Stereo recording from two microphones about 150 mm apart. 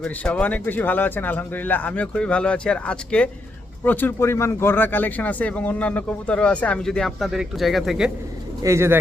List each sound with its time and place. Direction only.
0.0 s speech: 5° left (ahead or behind)
8.6 s speech: 20° right (ahead or behind)